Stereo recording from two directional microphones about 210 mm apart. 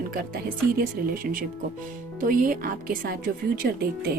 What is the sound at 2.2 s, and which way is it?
Speech, 40° right (ahead or behind).